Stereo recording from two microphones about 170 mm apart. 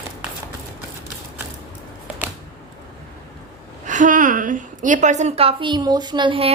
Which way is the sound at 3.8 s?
50° right (ahead or behind).